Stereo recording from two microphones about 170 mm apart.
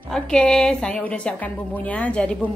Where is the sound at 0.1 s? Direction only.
5° left (ahead or behind).